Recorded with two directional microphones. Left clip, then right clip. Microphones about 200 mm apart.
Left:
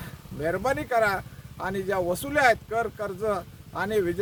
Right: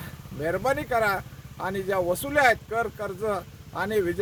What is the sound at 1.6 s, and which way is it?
Speech, 30° left (ahead or behind).